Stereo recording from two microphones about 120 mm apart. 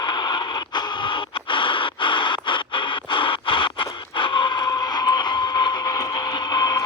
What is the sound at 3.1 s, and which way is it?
Scratch, 45° left (ahead or behind).